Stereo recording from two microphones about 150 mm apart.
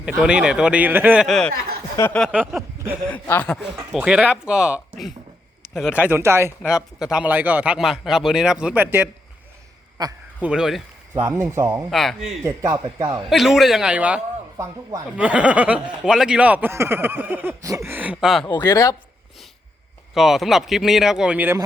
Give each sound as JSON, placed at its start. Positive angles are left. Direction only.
{"t": 0.0, "sound": "a man's voice", "side_deg": -5}
{"t": 1.3, "sound": "speech", "side_deg": 5}
{"t": 2.0, "sound": "speech", "side_deg": 20}
{"t": 3.1, "sound": "speech", "side_deg": 10}
{"t": 3.9, "sound": "a man's voice", "side_deg": -5}
{"t": 6.6, "sound": "a man's voice", "side_deg": -5}
{"t": 10.0, "sound": "a man's voice", "side_deg": -25}
{"t": 10.4, "sound": "speech", "side_deg": -5}
{"t": 11.1, "sound": "a man's voice", "side_deg": -20}
{"t": 11.9, "sound": "speech", "side_deg": 0}
{"t": 12.4, "sound": "a man's voice", "side_deg": -20}
{"t": 13.3, "sound": "a man's voice", "side_deg": 0}
{"t": 18.5, "sound": "speech", "side_deg": 25}
{"t": 20.1, "sound": "speech", "side_deg": 0}